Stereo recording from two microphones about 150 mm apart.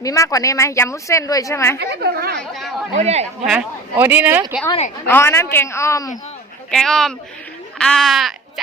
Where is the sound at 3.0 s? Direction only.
45° right (ahead or behind).